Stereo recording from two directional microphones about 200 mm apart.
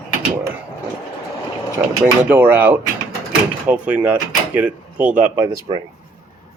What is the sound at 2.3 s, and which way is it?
Speech, 10° right (ahead or behind).